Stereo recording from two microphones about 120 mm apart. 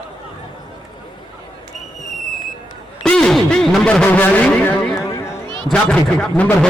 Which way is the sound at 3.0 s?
5° left (ahead or behind).